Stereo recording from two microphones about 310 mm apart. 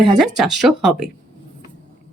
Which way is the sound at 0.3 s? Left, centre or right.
Centre.